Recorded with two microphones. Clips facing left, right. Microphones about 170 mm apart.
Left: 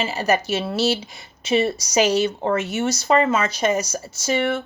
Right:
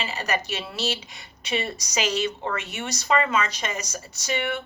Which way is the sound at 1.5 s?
30° left (ahead or behind).